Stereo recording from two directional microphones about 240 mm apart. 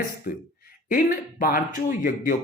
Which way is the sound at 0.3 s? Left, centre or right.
Left.